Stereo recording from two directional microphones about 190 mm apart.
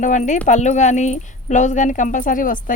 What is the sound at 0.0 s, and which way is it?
A woman's voice, 40° left (ahead or behind).